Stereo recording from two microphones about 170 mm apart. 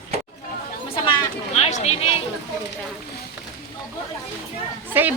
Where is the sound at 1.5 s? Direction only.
40° left (ahead or behind).